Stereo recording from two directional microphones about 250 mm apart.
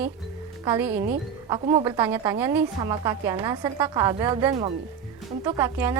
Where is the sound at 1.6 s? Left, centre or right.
Right.